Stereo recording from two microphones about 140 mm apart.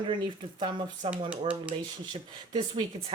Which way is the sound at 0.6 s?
35° right (ahead or behind).